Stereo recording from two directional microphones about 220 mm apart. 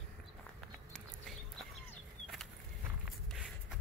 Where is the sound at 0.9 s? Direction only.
Centre (ahead or behind).